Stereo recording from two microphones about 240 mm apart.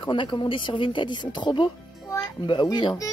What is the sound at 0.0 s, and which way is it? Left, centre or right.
Speech, centre.